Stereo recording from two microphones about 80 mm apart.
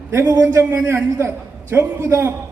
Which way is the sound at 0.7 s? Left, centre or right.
Right.